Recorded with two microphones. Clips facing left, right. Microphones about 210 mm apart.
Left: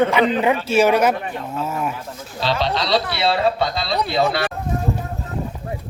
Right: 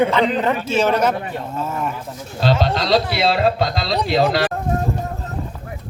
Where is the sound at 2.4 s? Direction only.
45° right (ahead or behind).